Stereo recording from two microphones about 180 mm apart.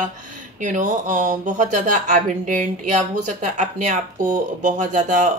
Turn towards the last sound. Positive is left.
turn(degrees=-45)  # may be behind; listen again after turning